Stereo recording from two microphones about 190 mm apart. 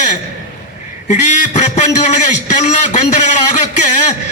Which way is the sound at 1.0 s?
40° left (ahead or behind).